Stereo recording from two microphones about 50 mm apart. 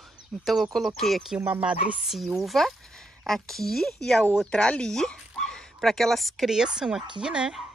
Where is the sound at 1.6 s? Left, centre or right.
Right.